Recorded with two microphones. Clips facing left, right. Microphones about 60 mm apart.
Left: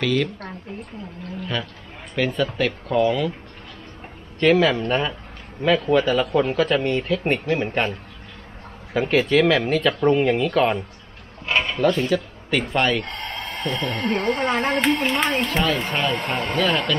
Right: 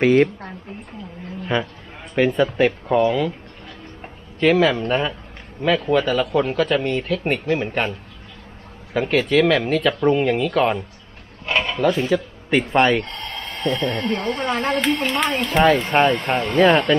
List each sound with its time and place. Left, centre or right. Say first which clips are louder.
0.0 s speech: right 7 dB; right
2.1 s speech: right 5 dB; centre
4.4 s speech: right 1 dB; centre
8.9 s speech: right 1 dB; centre
13.1 s speech: left 1 dB; centre
16.5 s speech: right 8 dB; right